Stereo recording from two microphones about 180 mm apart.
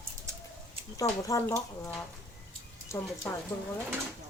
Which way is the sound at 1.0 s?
20° left (ahead or behind).